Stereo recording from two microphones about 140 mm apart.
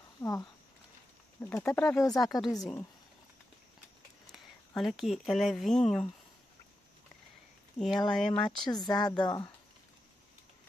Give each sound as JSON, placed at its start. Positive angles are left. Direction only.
{"t": 0.2, "sound": "speech", "side_deg": 25}
{"t": 4.3, "sound": "speech", "side_deg": 0}
{"t": 8.1, "sound": "speech", "side_deg": 5}
{"t": 8.5, "sound": "speech", "side_deg": 30}